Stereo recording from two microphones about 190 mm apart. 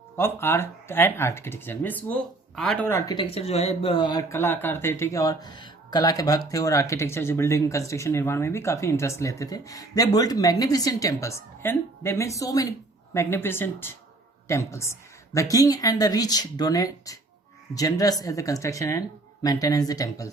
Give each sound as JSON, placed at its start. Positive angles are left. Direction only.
{"t": 0.2, "sound": "speech", "side_deg": 10}
{"t": 3.1, "sound": "speech", "side_deg": 25}